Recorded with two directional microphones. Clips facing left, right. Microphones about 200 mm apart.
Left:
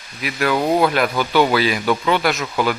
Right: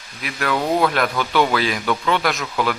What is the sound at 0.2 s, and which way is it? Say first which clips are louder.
Speech: left 3 dB; 5° left (ahead or behind).